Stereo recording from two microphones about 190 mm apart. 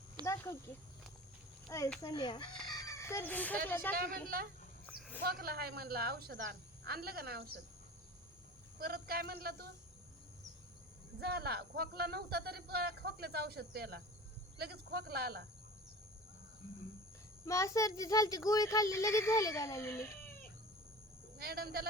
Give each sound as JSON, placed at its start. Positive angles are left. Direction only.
{"t": 0.3, "sound": "speech", "side_deg": 15}
{"t": 2.0, "sound": "speech", "side_deg": 20}
{"t": 4.9, "sound": "a sound", "side_deg": -5}
{"t": 5.2, "sound": "speech", "side_deg": -50}
{"t": 8.8, "sound": "speech", "side_deg": -50}
{"t": 11.2, "sound": "speech", "side_deg": -55}
{"t": 17.4, "sound": "speech", "side_deg": 15}
{"t": 21.3, "sound": "a man's voice", "side_deg": -55}